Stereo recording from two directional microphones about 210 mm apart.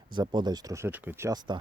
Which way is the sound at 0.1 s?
20° right (ahead or behind).